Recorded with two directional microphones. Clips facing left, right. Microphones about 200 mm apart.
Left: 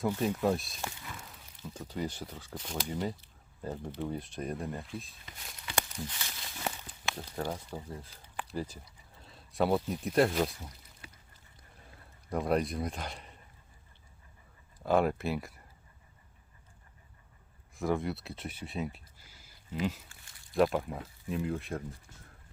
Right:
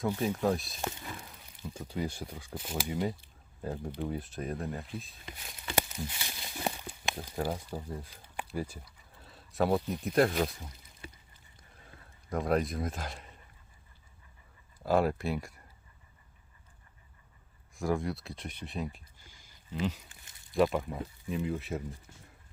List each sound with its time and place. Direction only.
0.2 s speech: centre (ahead or behind)
1.1 s speech: 10° right (ahead or behind)
5.7 s a sound: 10° right (ahead or behind)
8.4 s speech: 10° right (ahead or behind)
12.3 s speech: centre (ahead or behind)
14.8 s speech: centre (ahead or behind)
17.7 s speech: centre (ahead or behind)
20.1 s a sound: 20° right (ahead or behind)
20.5 s speech: centre (ahead or behind)